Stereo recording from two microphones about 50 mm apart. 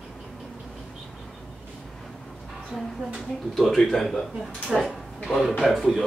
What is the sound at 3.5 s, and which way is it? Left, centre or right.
Speech, centre.